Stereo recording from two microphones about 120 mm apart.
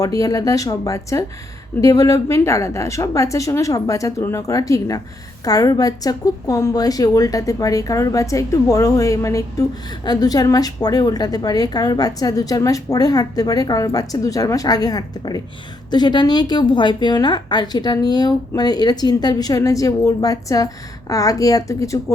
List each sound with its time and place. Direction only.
0.0 s a woman's voice: 30° left (ahead or behind)